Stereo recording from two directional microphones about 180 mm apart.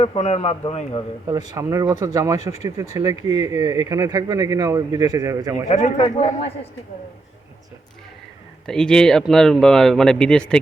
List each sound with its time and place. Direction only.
0.0 s a man's voice: 35° left (ahead or behind)
1.3 s speech: 20° right (ahead or behind)
5.6 s a man's voice: 40° left (ahead or behind)
8.6 s a man's voice: 5° left (ahead or behind)